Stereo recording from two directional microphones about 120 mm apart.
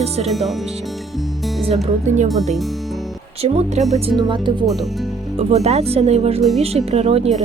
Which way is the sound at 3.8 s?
70° right (ahead or behind).